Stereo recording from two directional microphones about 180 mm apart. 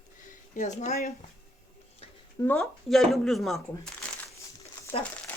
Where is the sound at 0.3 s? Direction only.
45° left (ahead or behind).